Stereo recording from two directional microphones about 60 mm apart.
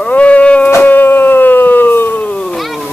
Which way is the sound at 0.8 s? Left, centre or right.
Left.